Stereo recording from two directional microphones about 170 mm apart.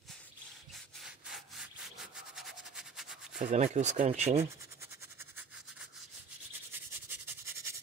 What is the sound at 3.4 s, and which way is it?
Speech, 40° right (ahead or behind).